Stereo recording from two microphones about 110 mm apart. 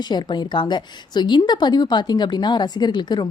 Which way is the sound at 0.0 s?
40° left (ahead or behind).